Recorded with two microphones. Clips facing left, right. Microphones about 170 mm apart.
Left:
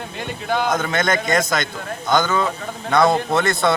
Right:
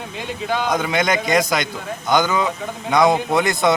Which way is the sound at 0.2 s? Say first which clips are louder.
Left 1 dB; centre (ahead or behind).